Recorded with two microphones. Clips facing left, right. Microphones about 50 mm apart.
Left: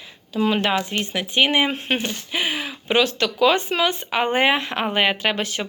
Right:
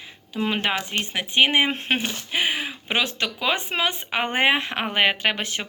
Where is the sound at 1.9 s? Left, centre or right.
Centre.